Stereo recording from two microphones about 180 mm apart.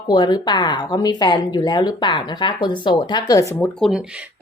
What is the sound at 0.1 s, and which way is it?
Speech, 20° left (ahead or behind).